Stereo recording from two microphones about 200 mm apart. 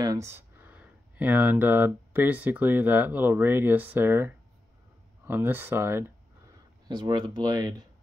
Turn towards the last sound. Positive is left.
turn(degrees=-20)  # may be behind; listen again after turning